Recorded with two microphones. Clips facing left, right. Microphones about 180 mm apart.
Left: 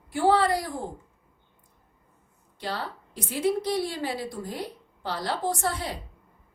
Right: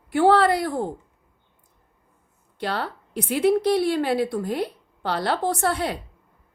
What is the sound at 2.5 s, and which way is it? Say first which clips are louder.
A woman's voice: right 5 dB; 65° right (ahead or behind).